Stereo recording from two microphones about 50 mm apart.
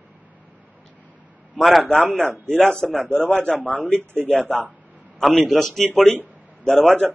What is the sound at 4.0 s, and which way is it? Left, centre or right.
Speech, right.